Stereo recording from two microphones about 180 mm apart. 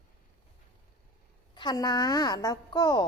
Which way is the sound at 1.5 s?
25° left (ahead or behind).